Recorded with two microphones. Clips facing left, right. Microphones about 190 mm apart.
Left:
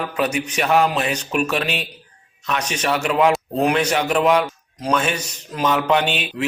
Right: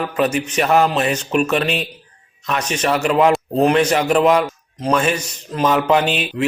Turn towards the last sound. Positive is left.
turn(degrees=0)  # may be behind; listen again after turning